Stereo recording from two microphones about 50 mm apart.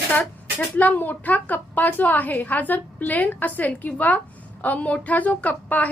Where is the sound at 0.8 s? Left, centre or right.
Left.